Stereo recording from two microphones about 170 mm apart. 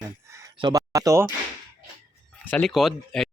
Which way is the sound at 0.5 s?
25° right (ahead or behind).